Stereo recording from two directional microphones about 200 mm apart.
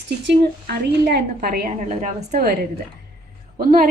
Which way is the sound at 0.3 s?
50° right (ahead or behind).